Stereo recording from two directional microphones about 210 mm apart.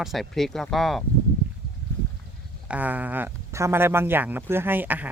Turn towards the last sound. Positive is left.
turn(degrees=-10)  # may be behind; listen again after turning